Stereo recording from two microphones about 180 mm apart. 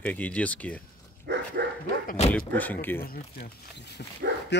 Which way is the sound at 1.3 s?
75° right (ahead or behind).